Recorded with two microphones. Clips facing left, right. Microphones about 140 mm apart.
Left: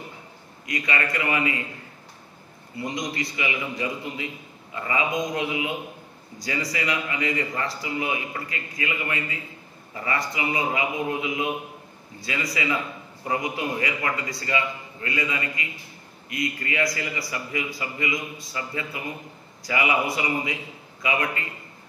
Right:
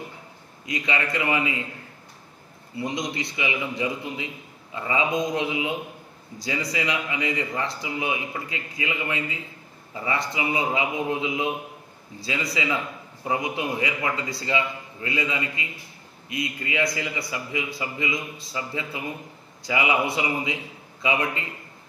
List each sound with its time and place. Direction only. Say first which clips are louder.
0.7 s a man's voice: even; 20° right (ahead or behind)
2.8 s a man's voice: right 1 dB; 20° right (ahead or behind)